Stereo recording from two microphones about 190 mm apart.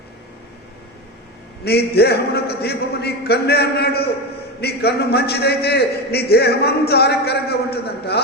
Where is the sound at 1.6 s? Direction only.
60° left (ahead or behind).